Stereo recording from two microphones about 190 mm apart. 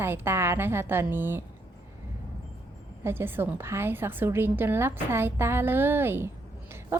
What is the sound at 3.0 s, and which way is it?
A woman's voice, 10° right (ahead or behind).